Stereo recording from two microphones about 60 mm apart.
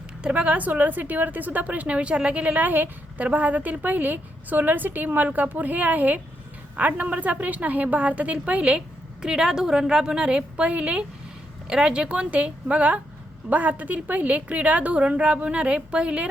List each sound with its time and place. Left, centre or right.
0.2 s a woman's voice: centre
9.2 s a woman's voice: centre